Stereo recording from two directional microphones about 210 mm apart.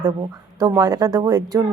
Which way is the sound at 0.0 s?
20° right (ahead or behind).